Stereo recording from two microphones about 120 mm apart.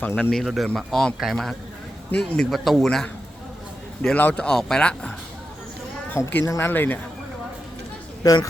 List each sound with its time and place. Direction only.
0.0 s speech: 15° left (ahead or behind)
0.3 s a man's voice: centre (ahead or behind)
6.4 s speech: 30° left (ahead or behind)
6.7 s speech: 15° left (ahead or behind)
8.2 s speech: 30° left (ahead or behind)